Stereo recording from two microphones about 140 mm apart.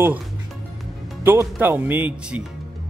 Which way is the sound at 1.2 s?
15° right (ahead or behind).